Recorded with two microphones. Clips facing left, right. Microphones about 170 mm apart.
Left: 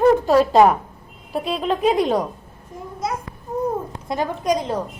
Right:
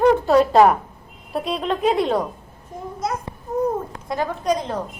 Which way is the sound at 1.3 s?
Centre (ahead or behind).